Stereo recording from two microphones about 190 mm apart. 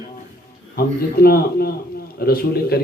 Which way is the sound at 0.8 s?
55° left (ahead or behind).